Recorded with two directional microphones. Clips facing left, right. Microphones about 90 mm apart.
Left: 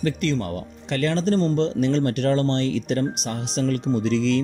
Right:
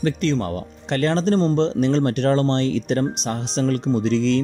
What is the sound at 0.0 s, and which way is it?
Speech, 30° right (ahead or behind).